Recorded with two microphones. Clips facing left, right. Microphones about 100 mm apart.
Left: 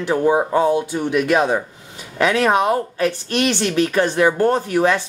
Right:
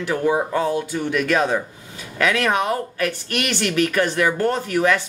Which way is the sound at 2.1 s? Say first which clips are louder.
Left 4 dB; 30° left (ahead or behind).